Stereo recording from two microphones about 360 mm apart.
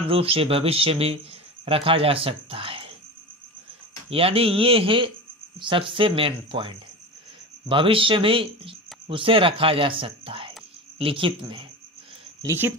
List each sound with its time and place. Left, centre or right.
0.1 s speech: centre
4.1 s speech: centre